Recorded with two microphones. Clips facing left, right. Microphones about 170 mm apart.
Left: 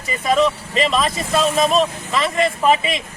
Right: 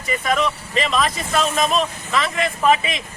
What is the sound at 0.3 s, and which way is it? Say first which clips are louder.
Speech: left 6 dB; 30° left (ahead or behind).